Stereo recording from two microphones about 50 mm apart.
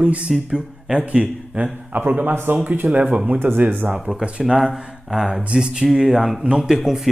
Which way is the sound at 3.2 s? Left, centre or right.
Right.